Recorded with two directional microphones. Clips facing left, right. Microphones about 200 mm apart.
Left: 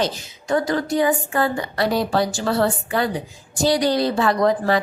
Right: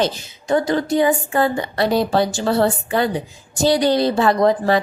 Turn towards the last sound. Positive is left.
turn(degrees=-25)  # may be behind; listen again after turning